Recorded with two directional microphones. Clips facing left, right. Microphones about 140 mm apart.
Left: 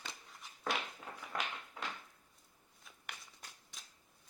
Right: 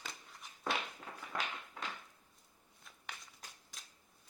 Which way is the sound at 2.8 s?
Centre (ahead or behind).